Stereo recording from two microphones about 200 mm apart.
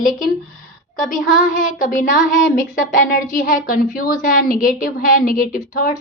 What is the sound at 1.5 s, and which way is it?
Speech, 40° left (ahead or behind).